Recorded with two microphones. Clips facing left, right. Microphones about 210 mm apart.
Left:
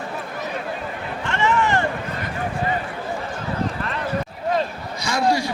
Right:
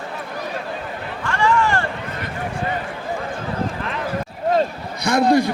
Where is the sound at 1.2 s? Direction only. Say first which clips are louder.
Right 2 dB; 20° left (ahead or behind).